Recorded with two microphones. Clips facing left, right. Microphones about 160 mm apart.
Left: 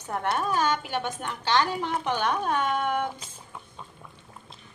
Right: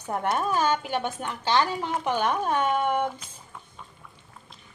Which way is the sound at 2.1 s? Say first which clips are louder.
Right 2 dB; 10° right (ahead or behind).